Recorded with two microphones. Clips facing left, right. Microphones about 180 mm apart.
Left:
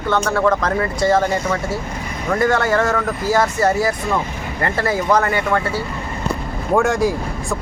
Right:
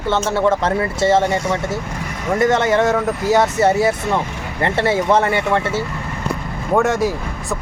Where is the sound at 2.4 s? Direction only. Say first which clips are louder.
Right 2 dB; 20° right (ahead or behind).